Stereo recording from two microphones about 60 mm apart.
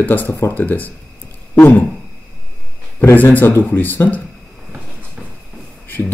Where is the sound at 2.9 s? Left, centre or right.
Left.